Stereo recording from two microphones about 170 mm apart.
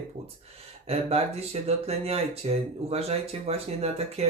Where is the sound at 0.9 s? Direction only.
35° right (ahead or behind).